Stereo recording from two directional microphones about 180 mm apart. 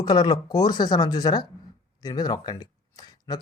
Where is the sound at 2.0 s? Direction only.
20° left (ahead or behind).